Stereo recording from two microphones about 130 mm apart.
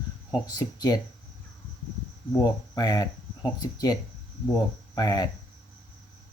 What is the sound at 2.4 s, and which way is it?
Speech, 30° left (ahead or behind).